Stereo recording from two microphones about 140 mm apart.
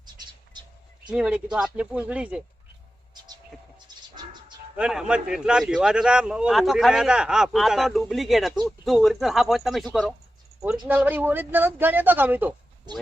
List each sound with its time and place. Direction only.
0.0 s bird: 30° right (ahead or behind)
1.1 s speech: 5° right (ahead or behind)
4.1 s bird: 30° right (ahead or behind)
4.8 s speech: 5° right (ahead or behind)
10.8 s speech: 10° right (ahead or behind)